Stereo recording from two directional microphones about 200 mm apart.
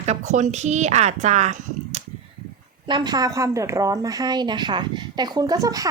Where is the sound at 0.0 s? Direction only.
35° right (ahead or behind).